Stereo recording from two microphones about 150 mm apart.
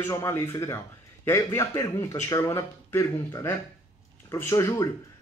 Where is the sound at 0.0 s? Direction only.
15° left (ahead or behind).